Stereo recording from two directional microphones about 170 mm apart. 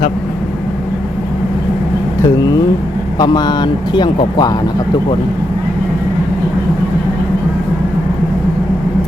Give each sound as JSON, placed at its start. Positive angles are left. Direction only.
{"t": 2.2, "sound": "speech", "side_deg": 20}